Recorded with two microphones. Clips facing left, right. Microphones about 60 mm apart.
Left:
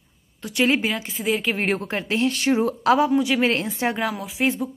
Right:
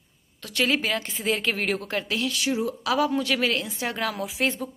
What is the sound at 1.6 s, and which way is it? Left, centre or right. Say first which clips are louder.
Speech: left 3 dB; left.